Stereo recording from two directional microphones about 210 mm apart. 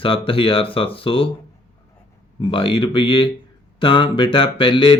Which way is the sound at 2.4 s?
25° left (ahead or behind).